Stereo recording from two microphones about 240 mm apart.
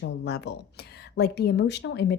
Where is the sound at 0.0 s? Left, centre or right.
Left.